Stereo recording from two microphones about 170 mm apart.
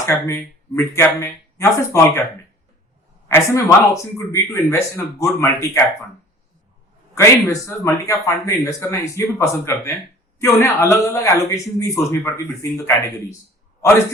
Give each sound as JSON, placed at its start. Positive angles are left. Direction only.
{"t": 0.0, "sound": "speech", "side_deg": 15}
{"t": 3.2, "sound": "speech", "side_deg": 15}
{"t": 7.2, "sound": "speech", "side_deg": 15}